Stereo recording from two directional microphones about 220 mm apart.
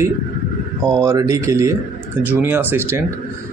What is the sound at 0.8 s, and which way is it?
Speech, 15° right (ahead or behind).